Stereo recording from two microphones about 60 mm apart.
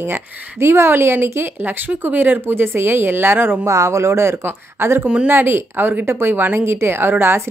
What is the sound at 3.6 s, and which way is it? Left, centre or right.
Speech, right.